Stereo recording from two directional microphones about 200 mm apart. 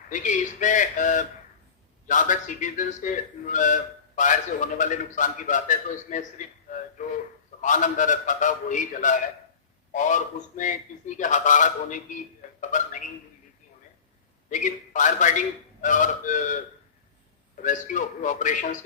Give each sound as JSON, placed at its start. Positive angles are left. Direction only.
{"t": 0.1, "sound": "a man's voice", "side_deg": 40}
{"t": 12.5, "sound": "a sound", "side_deg": 40}
{"t": 14.5, "sound": "a man's voice", "side_deg": 40}
{"t": 17.6, "sound": "a man's voice", "side_deg": 40}